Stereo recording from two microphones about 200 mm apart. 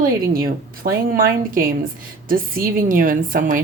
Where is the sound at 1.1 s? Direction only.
45° right (ahead or behind).